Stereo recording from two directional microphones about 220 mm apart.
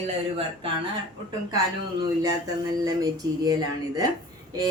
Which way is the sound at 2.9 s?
15° right (ahead or behind).